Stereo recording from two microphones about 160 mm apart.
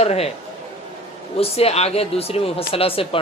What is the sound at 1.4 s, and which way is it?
Speech, 40° left (ahead or behind).